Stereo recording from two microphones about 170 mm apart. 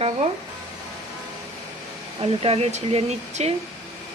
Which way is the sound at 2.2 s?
35° right (ahead or behind).